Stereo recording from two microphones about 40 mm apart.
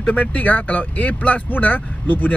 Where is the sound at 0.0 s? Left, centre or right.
Left.